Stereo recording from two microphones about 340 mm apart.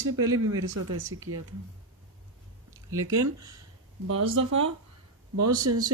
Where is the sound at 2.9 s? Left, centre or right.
Right.